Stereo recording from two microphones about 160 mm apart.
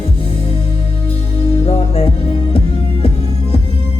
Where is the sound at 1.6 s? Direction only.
40° left (ahead or behind).